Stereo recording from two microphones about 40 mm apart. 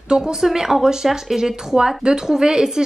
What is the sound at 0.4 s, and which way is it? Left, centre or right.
Speech, centre.